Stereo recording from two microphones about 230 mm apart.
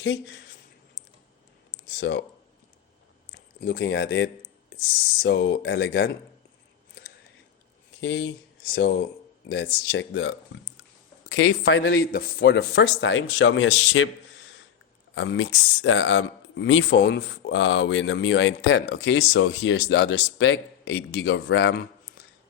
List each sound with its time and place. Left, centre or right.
0.0 s speech: left
2.0 s speech: left
3.6 s speech: left
8.0 s speech: left
15.1 s speech: left